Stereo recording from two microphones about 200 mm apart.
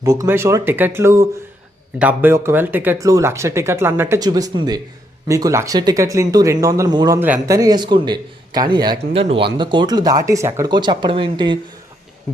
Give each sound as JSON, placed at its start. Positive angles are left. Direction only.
{"t": 0.0, "sound": "speech", "side_deg": -15}